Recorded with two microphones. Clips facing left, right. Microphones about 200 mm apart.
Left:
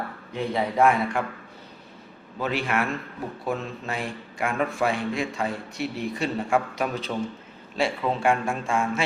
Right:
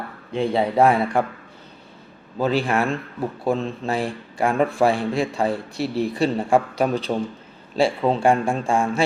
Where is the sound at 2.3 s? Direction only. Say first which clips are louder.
Right 6 dB; 30° right (ahead or behind).